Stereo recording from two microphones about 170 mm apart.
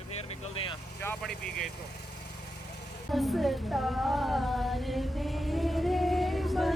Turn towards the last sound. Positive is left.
turn(degrees=0)  # may be behind; listen again after turning